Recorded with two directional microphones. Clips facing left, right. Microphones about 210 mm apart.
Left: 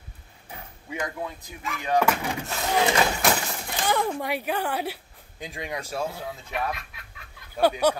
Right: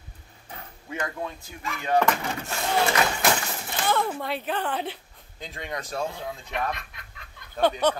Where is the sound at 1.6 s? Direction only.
Centre (ahead or behind).